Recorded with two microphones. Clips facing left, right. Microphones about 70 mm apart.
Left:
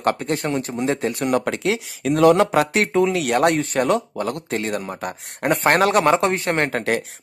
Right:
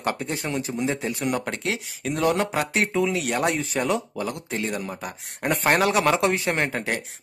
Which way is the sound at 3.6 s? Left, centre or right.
Left.